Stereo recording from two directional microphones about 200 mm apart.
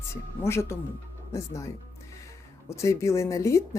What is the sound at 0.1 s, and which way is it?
A woman's voice, 15° left (ahead or behind).